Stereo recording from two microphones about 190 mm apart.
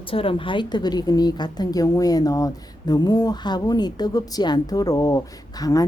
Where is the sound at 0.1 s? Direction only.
30° left (ahead or behind).